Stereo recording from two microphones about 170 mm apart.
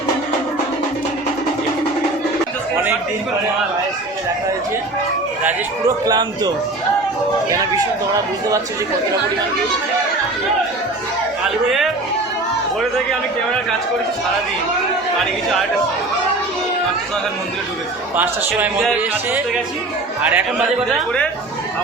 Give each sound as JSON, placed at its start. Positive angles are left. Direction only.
{"t": 6.1, "sound": "speech", "side_deg": -20}
{"t": 18.2, "sound": "a man's voice", "side_deg": -10}
{"t": 20.2, "sound": "a man's voice", "side_deg": -10}